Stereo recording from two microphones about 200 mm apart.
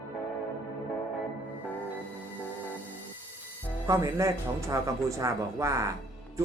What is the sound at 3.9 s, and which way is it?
Speech, 15° right (ahead or behind).